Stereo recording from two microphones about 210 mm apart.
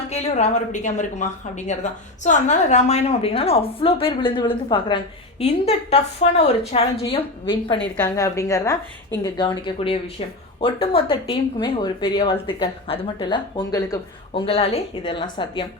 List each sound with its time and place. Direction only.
0.1 s a woman's voice: 30° left (ahead or behind)
7.8 s a woman's voice: 5° left (ahead or behind)